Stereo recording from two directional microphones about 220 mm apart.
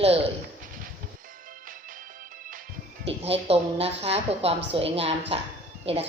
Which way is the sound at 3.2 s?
25° right (ahead or behind).